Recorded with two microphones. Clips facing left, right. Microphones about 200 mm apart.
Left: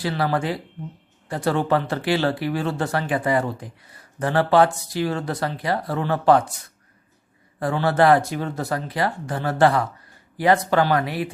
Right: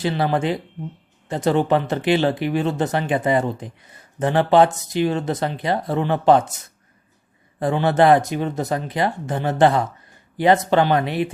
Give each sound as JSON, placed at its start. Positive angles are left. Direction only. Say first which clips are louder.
{"t": 0.0, "sound": "speech", "louder": "right 3 dB", "side_deg": -20}
{"t": 7.6, "sound": "speech", "louder": "right 2 dB", "side_deg": -20}